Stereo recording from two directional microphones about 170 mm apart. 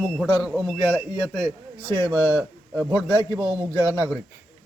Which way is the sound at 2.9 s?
15° left (ahead or behind).